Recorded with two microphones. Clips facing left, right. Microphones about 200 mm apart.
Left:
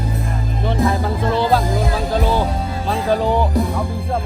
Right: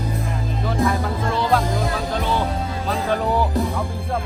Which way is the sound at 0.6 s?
30° left (ahead or behind).